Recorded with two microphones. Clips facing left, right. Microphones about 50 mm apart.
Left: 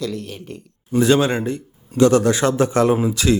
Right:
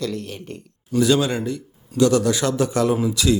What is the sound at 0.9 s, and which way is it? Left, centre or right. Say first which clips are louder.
A man's voice: left 2 dB; left.